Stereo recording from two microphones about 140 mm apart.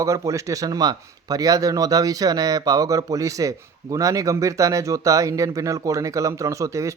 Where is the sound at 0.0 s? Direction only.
20° right (ahead or behind).